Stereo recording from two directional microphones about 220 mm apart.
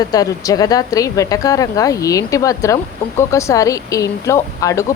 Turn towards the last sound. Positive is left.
turn(degrees=15)  # may be behind; listen again after turning